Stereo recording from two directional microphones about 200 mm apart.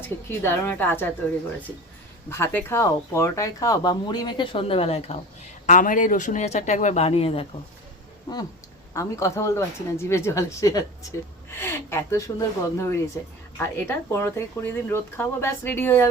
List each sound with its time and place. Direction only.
0.3 s speech: 10° left (ahead or behind)
2.3 s speech: 10° left (ahead or behind); by 5.1 s 30° left (ahead or behind)
5.6 s speech: 40° left (ahead or behind)
8.9 s speech: 15° left (ahead or behind)